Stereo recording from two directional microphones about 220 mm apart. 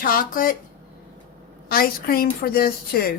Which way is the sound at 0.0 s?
40° left (ahead or behind).